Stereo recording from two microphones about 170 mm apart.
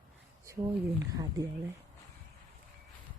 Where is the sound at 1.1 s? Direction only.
20° right (ahead or behind).